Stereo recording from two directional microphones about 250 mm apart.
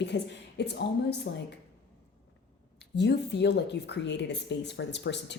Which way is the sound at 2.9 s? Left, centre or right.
Left.